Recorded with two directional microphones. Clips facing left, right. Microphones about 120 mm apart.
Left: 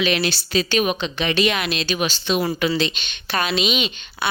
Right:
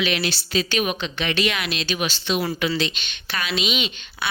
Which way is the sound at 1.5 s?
40° left (ahead or behind).